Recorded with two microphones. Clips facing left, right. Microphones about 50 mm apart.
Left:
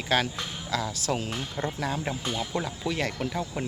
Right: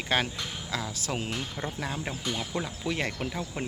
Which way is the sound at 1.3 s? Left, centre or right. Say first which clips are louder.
Left 2 dB; centre.